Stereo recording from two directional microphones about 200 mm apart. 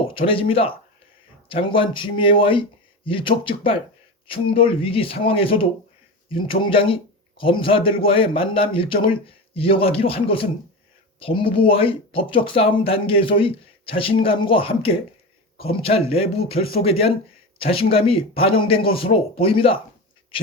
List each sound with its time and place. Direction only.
0.0 s speech: 25° left (ahead or behind)